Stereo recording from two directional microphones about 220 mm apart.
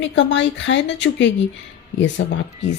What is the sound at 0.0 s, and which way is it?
Speech, 55° left (ahead or behind).